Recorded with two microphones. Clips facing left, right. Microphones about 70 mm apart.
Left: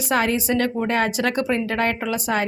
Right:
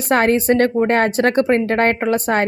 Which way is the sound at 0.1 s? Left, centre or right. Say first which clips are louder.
Right 6 dB; right.